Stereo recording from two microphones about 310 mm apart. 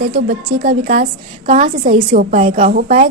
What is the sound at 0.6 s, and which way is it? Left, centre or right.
Speech, right.